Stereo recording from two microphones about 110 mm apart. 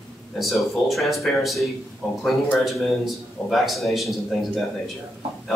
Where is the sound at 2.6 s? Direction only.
Centre (ahead or behind).